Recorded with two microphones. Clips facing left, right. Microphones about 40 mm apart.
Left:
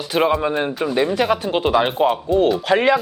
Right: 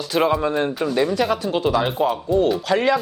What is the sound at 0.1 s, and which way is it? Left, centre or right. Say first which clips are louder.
Speech: left 1 dB; centre.